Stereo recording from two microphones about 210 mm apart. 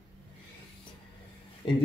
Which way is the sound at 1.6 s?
25° left (ahead or behind).